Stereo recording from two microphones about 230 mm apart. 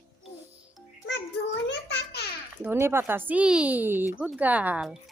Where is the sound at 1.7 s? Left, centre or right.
Left.